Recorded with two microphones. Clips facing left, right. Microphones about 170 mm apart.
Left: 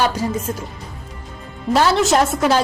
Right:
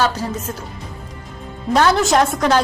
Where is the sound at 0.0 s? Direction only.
10° left (ahead or behind).